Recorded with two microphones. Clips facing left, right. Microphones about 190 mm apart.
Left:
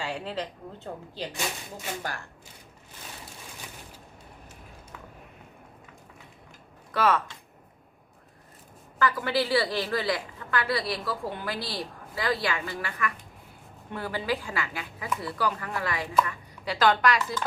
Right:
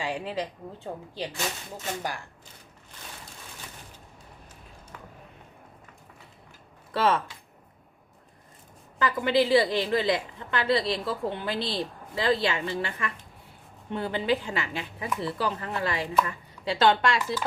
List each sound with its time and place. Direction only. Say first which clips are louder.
0.0 s a woman's voice: right 2 dB; 15° right (ahead or behind)
6.9 s a woman's voice: even; 30° right (ahead or behind)
9.0 s a woman's voice: right 2 dB; 20° right (ahead or behind)